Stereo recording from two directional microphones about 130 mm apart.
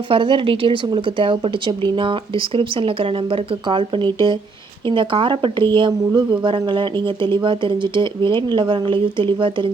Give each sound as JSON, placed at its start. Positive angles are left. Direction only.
{"t": 0.1, "sound": "speech", "side_deg": -40}